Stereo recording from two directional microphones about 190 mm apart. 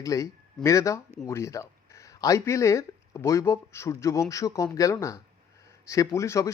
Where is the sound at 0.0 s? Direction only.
15° left (ahead or behind).